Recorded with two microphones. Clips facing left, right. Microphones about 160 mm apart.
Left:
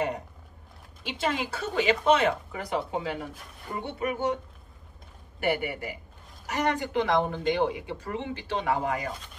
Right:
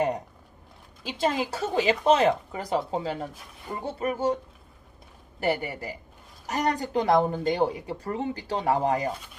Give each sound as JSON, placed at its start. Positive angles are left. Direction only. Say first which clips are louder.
{"t": 1.0, "sound": "speech", "louder": "right 3 dB", "side_deg": -35}
{"t": 5.4, "sound": "speech", "louder": "right 1 dB", "side_deg": -35}